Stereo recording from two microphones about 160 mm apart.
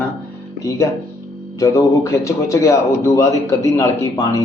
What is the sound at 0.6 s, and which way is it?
A man's voice, 20° left (ahead or behind).